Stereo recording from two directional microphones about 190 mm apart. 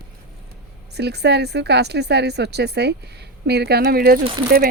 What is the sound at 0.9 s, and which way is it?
Speech, 60° right (ahead or behind).